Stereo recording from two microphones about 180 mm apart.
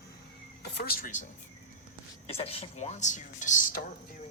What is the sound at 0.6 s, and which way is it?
Speech, 60° left (ahead or behind).